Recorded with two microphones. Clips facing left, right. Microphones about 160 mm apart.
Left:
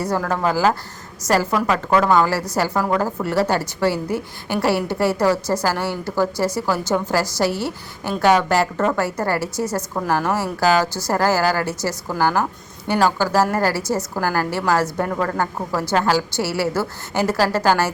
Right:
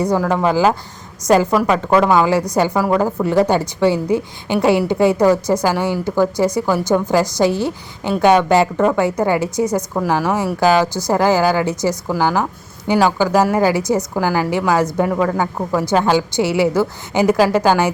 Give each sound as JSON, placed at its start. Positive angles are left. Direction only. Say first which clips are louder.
{"t": 0.0, "sound": "a woman's voice", "louder": "right 5 dB", "side_deg": -15}